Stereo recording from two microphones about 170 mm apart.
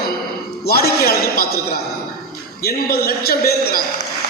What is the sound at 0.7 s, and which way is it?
Speech, 65° left (ahead or behind).